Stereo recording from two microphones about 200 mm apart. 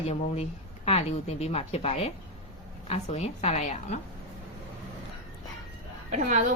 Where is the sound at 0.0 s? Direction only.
30° left (ahead or behind).